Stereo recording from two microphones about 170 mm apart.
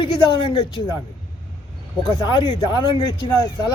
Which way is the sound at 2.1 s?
25° left (ahead or behind).